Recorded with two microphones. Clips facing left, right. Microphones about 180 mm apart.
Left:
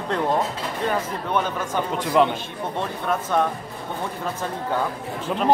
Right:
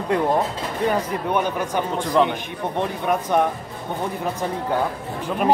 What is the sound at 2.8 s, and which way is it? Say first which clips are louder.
Speech: right 3 dB; 15° right (ahead or behind).